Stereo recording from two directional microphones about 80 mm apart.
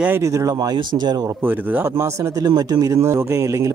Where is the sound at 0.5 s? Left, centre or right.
Right.